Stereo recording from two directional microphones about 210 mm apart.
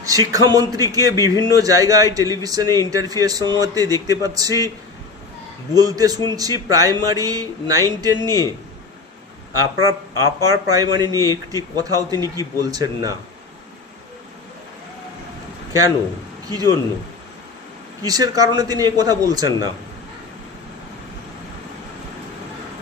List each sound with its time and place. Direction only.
0.0 s a man's voice: 15° right (ahead or behind)
5.7 s a man's voice: 15° right (ahead or behind)
9.5 s a man's voice: 15° right (ahead or behind)
16.5 s a man's voice: 20° right (ahead or behind)
18.0 s a man's voice: 15° right (ahead or behind)